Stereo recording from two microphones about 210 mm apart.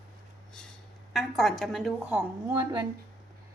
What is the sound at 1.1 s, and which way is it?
A woman's voice, centre (ahead or behind).